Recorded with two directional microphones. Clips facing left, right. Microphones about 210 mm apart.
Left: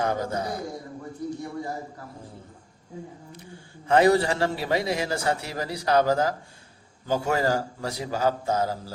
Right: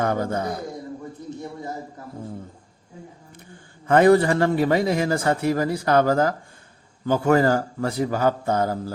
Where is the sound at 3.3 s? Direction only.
50° right (ahead or behind).